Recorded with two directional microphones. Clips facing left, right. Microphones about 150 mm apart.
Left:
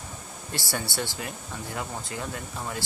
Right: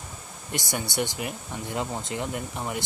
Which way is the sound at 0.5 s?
15° right (ahead or behind).